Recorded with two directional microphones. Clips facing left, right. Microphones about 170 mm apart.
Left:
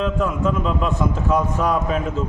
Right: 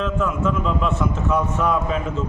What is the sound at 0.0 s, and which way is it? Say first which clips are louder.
A man's voice: left 1 dB; 35° left (ahead or behind).